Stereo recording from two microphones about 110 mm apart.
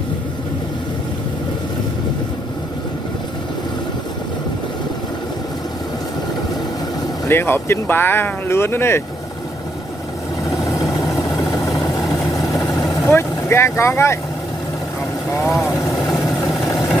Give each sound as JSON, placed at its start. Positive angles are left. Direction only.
{"t": 7.2, "sound": "speech", "side_deg": 20}
{"t": 10.6, "sound": "vehicle", "side_deg": 30}
{"t": 12.0, "sound": "vehicle", "side_deg": 0}
{"t": 13.0, "sound": "speech", "side_deg": 25}
{"t": 16.1, "sound": "vehicle", "side_deg": 0}
{"t": 16.6, "sound": "vehicle", "side_deg": 25}